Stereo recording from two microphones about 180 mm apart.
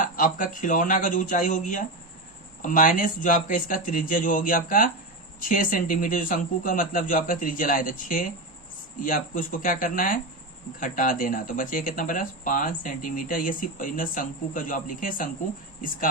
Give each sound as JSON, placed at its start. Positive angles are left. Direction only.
{"t": 0.0, "sound": "speech", "side_deg": 50}